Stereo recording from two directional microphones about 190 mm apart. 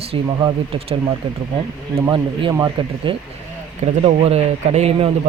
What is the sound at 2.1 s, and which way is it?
Speech, 25° right (ahead or behind).